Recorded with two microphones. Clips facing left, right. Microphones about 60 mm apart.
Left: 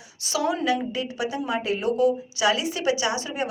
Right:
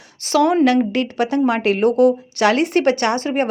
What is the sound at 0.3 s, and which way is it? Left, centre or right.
A woman's voice, right.